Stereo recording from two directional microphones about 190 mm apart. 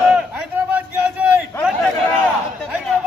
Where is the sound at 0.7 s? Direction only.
5° right (ahead or behind).